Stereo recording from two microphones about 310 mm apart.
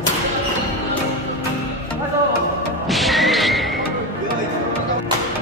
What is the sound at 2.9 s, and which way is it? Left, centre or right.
Music, centre.